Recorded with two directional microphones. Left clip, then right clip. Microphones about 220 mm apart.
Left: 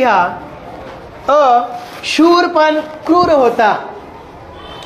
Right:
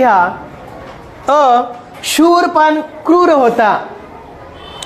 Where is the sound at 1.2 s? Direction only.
45° right (ahead or behind).